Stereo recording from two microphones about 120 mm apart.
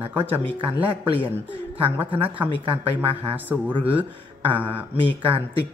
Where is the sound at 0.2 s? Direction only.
45° right (ahead or behind).